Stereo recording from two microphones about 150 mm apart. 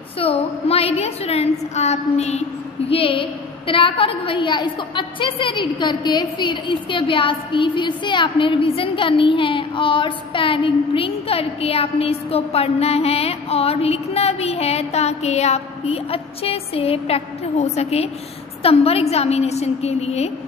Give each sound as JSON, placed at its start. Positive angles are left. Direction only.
{"t": 0.2, "sound": "a woman's voice", "side_deg": 40}
{"t": 2.9, "sound": "a woman's voice", "side_deg": 35}